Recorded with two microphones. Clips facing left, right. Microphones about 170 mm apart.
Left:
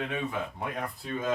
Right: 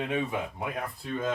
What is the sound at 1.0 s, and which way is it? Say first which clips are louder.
Speech: right 2 dB; 5° left (ahead or behind).